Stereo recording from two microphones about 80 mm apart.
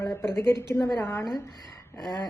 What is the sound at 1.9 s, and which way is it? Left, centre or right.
Speech, left.